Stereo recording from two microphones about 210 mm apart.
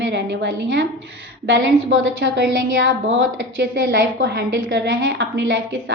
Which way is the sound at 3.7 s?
50° right (ahead or behind).